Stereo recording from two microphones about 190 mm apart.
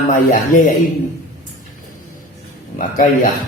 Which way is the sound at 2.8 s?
40° left (ahead or behind).